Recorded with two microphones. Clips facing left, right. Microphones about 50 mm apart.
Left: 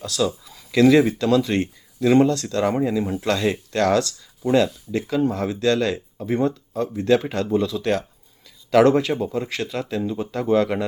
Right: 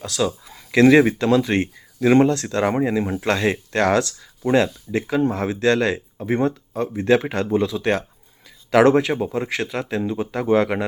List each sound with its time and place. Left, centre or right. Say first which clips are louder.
0.3 s speech: right 1 dB; right